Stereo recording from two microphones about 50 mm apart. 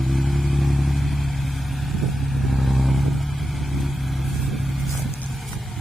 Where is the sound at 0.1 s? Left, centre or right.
Centre.